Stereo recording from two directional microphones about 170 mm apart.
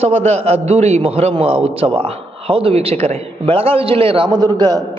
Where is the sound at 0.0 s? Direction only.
40° right (ahead or behind).